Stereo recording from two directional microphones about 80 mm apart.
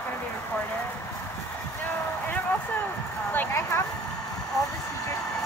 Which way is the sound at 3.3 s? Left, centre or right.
Left.